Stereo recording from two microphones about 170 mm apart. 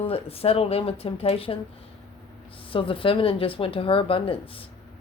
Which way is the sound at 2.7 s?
30° left (ahead or behind).